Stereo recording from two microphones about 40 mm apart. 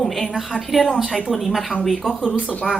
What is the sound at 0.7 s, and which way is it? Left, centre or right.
Speech, centre.